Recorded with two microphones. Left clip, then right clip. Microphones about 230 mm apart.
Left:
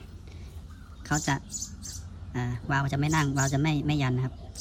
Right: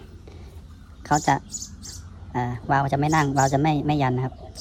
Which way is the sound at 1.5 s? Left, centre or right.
Centre.